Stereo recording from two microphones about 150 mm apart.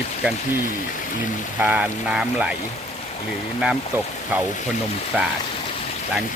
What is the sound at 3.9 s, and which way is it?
Speech, 15° right (ahead or behind).